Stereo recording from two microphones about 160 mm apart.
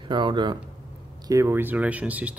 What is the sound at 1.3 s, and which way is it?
Speech, 15° right (ahead or behind).